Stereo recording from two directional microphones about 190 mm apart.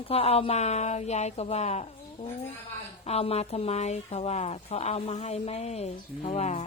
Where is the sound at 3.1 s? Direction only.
35° left (ahead or behind).